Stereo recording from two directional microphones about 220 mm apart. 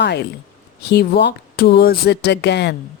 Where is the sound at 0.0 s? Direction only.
50° left (ahead or behind).